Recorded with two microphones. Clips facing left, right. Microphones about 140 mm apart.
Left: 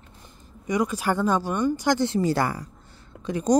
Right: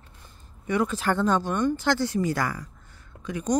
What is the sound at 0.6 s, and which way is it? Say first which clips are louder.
Speech: left 1 dB; 10° left (ahead or behind).